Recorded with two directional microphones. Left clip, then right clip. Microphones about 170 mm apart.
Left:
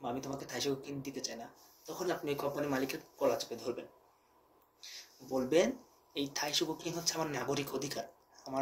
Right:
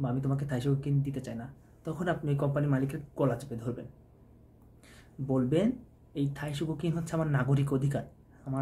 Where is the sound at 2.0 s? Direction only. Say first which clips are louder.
Right 3 dB; 10° right (ahead or behind).